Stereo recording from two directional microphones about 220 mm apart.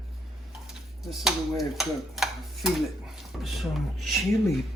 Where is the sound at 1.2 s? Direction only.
Centre (ahead or behind).